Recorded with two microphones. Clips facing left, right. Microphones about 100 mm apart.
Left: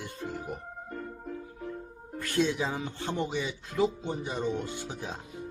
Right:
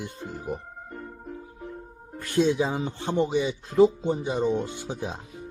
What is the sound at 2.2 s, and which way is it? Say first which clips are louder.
Speech: right 5 dB; 25° right (ahead or behind).